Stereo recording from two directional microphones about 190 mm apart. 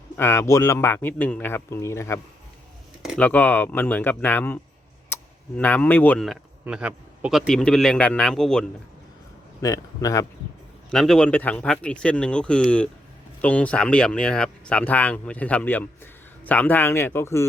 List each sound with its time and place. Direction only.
0.2 s speech: 15° left (ahead or behind)
9.6 s a man's voice: 20° left (ahead or behind)
10.9 s speech: centre (ahead or behind)